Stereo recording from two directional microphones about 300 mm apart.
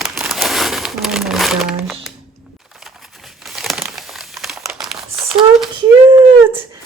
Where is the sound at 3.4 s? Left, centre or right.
Centre.